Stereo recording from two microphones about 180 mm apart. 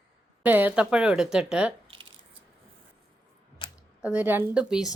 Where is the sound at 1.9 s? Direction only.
30° right (ahead or behind).